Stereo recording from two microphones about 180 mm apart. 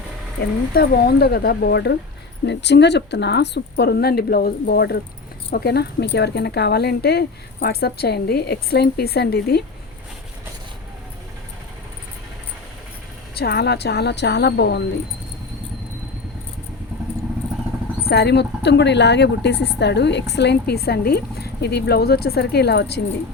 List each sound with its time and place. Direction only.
0.7 s speech: 60° left (ahead or behind)
13.3 s speech: 65° left (ahead or behind)
18.0 s speech: 65° left (ahead or behind)